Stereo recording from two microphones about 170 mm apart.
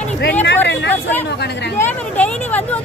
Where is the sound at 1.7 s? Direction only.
10° left (ahead or behind).